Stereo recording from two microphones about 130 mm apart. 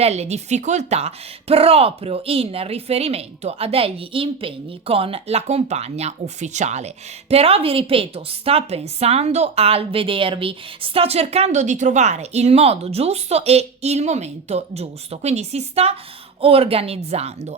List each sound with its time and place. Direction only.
0.0 s speech: 55° right (ahead or behind)